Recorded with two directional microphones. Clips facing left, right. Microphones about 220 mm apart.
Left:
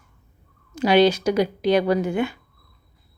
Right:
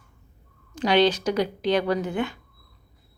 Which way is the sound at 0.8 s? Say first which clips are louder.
Left 4 dB; 10° left (ahead or behind).